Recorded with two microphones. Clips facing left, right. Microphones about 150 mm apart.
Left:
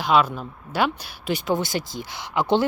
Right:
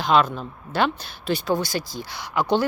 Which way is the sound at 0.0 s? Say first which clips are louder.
Even; 5° left (ahead or behind).